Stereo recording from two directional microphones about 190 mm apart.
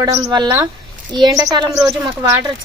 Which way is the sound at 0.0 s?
20° right (ahead or behind).